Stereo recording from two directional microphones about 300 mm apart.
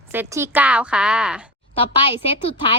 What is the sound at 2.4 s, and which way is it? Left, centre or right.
Speech, centre.